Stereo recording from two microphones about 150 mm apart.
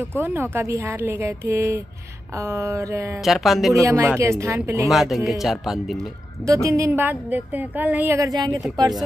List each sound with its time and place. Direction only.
0.2 s a woman's voice: 15° right (ahead or behind)
2.3 s a sound: 20° right (ahead or behind)
3.3 s speech: centre (ahead or behind)
3.7 s a sound: 20° right (ahead or behind)
4.8 s speech: centre (ahead or behind)
6.4 s a woman's voice: 20° right (ahead or behind)